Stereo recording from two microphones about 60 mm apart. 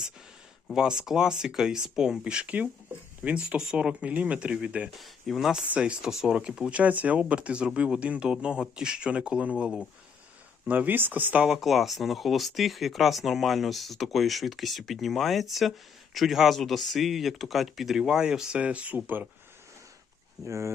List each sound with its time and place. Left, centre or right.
0.7 s speech: centre
4.9 s speech: centre
5.6 s speech: right
9.6 s speech: centre
10.7 s speech: right
11.4 s speech: centre; by 19.3 s right
20.4 s speech: right